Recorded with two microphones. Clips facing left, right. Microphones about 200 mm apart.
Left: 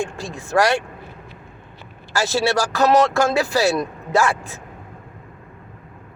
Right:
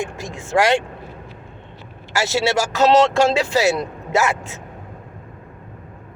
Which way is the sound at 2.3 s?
25° right (ahead or behind).